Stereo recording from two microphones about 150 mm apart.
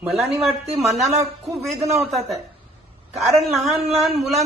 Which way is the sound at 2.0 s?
Centre (ahead or behind).